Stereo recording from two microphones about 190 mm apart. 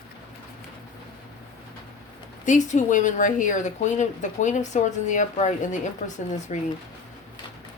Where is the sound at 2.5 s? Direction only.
40° left (ahead or behind).